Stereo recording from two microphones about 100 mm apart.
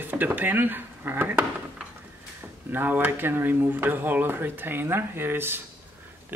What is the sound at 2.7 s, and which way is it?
Speech, 20° right (ahead or behind).